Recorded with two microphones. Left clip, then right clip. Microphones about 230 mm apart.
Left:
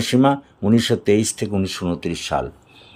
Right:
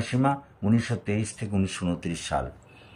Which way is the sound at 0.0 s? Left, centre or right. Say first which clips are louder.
Left 9 dB; left.